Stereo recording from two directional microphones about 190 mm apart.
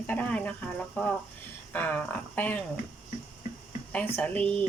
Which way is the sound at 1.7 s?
10° left (ahead or behind).